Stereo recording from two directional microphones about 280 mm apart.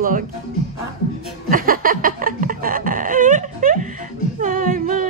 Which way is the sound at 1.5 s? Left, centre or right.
Right.